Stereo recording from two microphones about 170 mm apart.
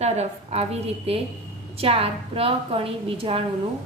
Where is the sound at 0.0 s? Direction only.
40° right (ahead or behind).